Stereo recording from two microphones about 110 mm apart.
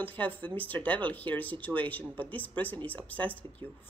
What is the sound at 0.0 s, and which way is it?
Speech, 15° left (ahead or behind).